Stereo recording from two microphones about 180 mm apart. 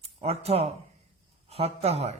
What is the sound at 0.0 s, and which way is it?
Speech, 35° right (ahead or behind).